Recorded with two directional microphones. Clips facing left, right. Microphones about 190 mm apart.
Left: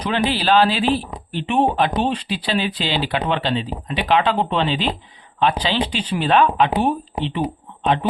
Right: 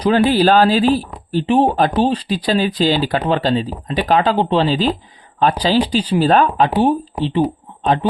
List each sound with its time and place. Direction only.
0.0 s speech: 40° right (ahead or behind)
6.8 s speech: 30° right (ahead or behind)